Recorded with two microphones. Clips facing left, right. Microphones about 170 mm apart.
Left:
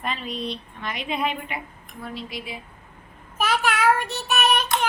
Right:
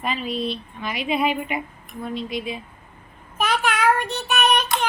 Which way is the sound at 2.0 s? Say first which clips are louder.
Right 6 dB; 20° right (ahead or behind).